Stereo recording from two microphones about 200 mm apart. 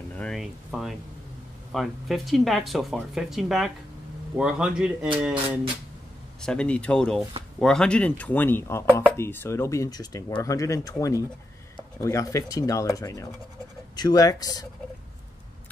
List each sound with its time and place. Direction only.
0.1 s speech: 5° left (ahead or behind)
6.4 s speech: 5° left (ahead or behind)